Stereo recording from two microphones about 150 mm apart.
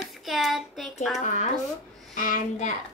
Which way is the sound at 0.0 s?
Centre (ahead or behind).